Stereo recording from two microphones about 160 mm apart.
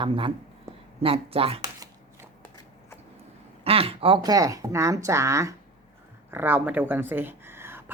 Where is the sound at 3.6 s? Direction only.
35° right (ahead or behind); by 7.8 s 15° right (ahead or behind).